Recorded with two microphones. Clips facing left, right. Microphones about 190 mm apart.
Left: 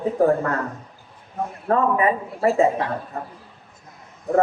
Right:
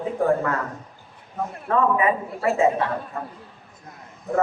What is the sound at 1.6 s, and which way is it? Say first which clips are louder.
A man's voice: left 1 dB; 35° left (ahead or behind).